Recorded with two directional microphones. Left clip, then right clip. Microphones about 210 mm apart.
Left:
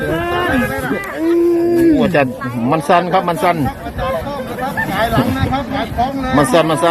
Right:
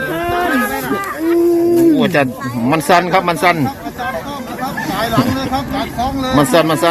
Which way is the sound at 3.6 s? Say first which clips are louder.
Left 1 dB; 40° right (ahead or behind).